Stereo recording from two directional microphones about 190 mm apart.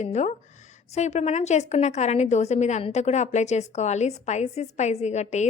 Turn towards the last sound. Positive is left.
turn(degrees=35)  # may be behind; listen again after turning